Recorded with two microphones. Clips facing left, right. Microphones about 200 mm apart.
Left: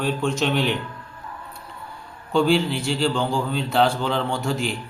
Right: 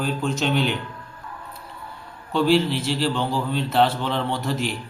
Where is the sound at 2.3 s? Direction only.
Centre (ahead or behind).